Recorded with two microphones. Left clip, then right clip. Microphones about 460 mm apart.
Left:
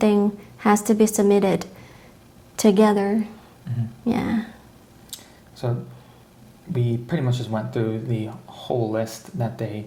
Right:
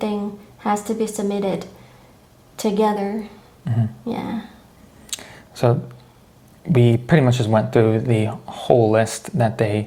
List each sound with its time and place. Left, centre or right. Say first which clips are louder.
0.6 s a woman's voice: left 3 dB; left
5.1 s a sound: right 9 dB; right
6.7 s speech: right 10 dB; right